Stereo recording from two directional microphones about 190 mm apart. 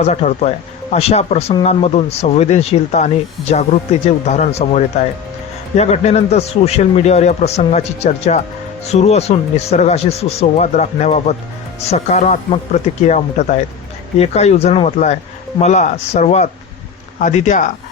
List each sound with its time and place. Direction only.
0.0 s a man's voice: 35° left (ahead or behind)